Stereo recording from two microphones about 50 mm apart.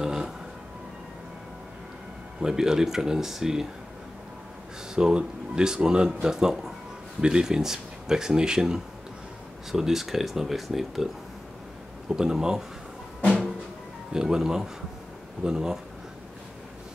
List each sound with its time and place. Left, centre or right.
0.0 s music: centre
2.4 s speech: centre
4.9 s speech: centre
12.1 s speech: centre
13.2 s music: centre
14.1 s speech: centre